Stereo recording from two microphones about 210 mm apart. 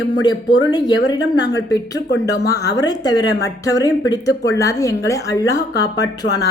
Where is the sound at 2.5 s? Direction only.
50° left (ahead or behind).